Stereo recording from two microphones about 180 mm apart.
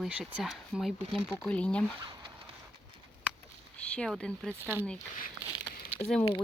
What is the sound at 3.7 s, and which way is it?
Speech, 5° left (ahead or behind).